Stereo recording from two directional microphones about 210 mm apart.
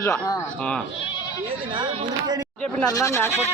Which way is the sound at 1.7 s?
20° right (ahead or behind).